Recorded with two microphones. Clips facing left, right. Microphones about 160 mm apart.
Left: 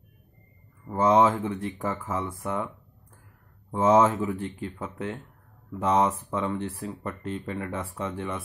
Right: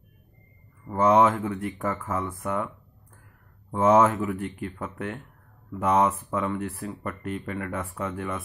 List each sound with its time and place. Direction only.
0.9 s speech: 30° left (ahead or behind)
3.7 s speech: 25° left (ahead or behind)